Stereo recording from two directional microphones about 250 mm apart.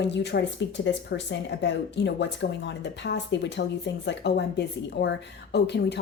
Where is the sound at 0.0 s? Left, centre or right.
Left.